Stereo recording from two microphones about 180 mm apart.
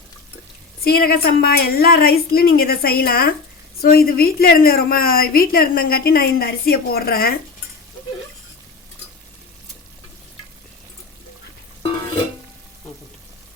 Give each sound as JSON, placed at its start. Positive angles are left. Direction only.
{"t": 0.9, "sound": "a woman's voice", "side_deg": 55}